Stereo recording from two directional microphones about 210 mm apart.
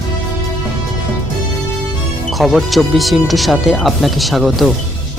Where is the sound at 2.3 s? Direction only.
Centre (ahead or behind).